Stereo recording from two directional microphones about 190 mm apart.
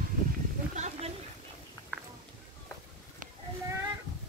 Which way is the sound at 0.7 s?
40° right (ahead or behind).